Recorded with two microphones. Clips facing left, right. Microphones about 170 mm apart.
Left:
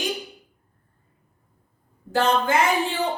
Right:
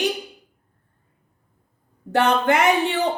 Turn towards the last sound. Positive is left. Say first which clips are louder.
# right 3 dB
turn(degrees=-70)  # may be behind; listen again after turning